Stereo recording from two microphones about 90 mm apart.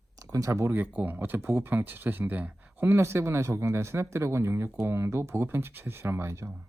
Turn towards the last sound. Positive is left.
turn(degrees=-30)  # may be behind; listen again after turning